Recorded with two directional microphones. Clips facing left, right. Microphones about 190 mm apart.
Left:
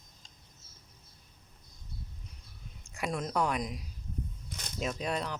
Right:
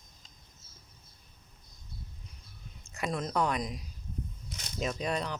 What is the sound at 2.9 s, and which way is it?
Speech, 10° left (ahead or behind).